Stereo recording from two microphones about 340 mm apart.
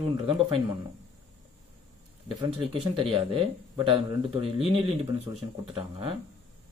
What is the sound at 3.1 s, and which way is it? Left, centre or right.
Speech, centre.